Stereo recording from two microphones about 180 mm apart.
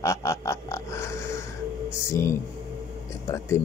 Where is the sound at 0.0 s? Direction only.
15° left (ahead or behind).